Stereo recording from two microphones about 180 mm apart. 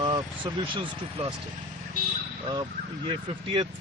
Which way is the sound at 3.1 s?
25° right (ahead or behind).